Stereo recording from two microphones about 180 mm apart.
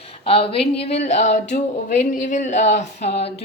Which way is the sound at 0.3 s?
30° left (ahead or behind).